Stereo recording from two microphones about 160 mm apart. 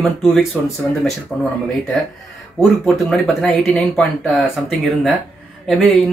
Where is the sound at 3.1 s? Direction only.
5° left (ahead or behind).